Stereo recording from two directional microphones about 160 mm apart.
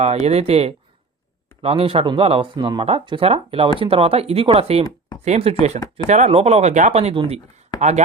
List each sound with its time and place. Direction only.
0.0 s speech: 40° right (ahead or behind)